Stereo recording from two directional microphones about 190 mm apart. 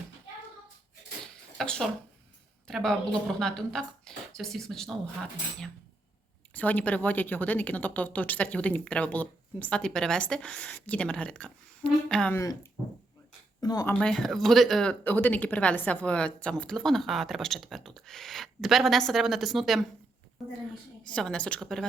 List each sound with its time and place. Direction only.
1.5 s speech: 5° left (ahead or behind)
13.6 s speech: 20° left (ahead or behind)
14.0 s speech: 5° left (ahead or behind)
21.1 s speech: 5° left (ahead or behind)